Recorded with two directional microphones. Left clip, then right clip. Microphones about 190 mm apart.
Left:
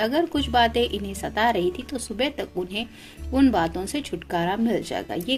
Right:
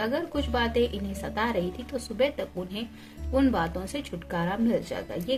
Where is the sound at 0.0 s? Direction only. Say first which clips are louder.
Left 6 dB; 45° left (ahead or behind).